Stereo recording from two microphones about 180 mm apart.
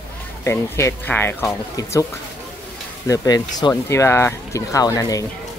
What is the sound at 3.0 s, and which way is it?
Speech, 20° left (ahead or behind).